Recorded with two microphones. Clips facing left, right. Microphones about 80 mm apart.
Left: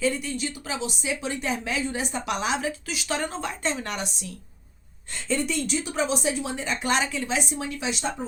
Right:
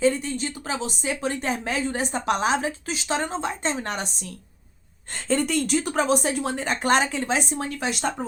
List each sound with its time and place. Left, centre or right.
0.0 s a woman's voice: right